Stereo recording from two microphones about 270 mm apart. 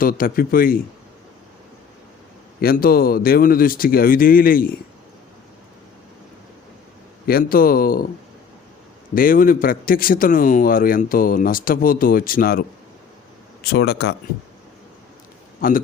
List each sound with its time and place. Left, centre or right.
0.0 s speech: left
2.6 s speech: left
7.3 s speech: left
9.1 s speech: left
15.6 s speech: left